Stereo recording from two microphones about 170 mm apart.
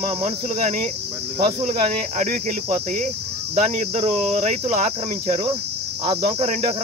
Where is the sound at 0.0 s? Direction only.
40° right (ahead or behind).